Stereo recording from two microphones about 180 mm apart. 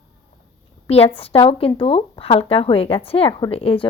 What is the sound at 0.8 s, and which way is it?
Speech, 35° left (ahead or behind).